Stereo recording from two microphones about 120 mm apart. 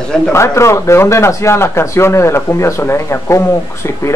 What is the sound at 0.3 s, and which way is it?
A man's voice, 25° left (ahead or behind).